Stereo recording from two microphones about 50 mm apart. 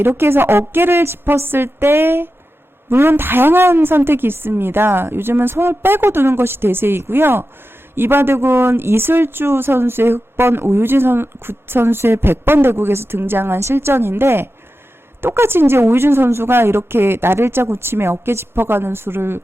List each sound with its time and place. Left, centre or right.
0.0 s speech: right
13.6 s speech: right